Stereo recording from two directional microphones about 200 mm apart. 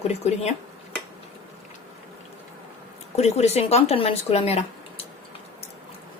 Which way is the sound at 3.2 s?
35° left (ahead or behind).